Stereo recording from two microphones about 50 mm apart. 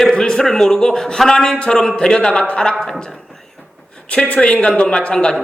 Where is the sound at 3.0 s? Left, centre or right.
Centre.